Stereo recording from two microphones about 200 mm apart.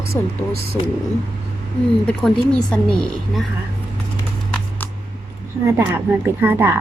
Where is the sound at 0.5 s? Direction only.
50° right (ahead or behind).